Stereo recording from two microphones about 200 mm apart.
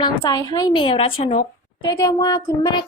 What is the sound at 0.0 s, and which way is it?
A woman's voice, 20° left (ahead or behind).